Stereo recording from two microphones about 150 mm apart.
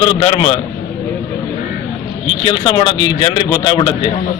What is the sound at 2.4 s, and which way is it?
A man's voice, 35° left (ahead or behind).